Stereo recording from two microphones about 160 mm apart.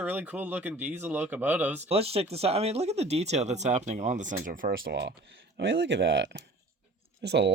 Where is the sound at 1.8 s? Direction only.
40° right (ahead or behind).